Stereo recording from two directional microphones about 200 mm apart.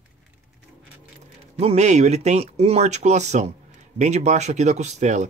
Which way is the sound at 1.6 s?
35° right (ahead or behind).